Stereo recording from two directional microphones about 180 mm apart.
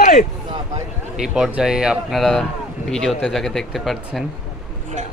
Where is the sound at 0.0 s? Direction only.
50° left (ahead or behind).